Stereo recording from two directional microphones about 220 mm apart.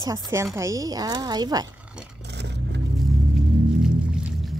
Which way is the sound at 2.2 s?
50° right (ahead or behind).